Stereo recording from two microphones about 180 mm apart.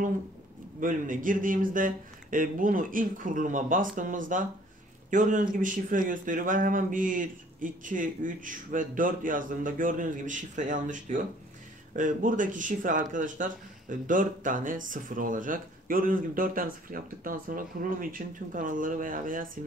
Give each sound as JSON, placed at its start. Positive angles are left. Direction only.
{"t": 0.7, "sound": "speech", "side_deg": -50}